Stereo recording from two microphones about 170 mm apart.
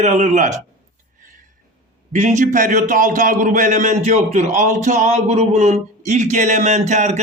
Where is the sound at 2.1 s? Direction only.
45° right (ahead or behind).